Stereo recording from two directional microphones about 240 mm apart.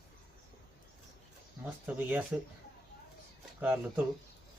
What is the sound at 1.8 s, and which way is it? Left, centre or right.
Speech, centre.